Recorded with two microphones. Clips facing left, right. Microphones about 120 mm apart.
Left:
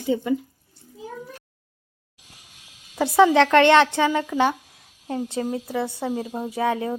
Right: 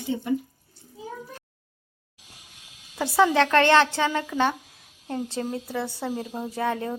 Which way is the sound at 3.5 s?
20° left (ahead or behind).